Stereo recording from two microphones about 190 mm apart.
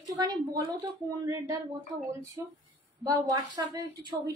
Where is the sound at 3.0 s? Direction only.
20° right (ahead or behind).